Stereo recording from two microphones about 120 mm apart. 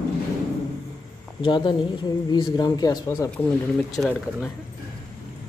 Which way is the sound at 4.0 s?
5° left (ahead or behind).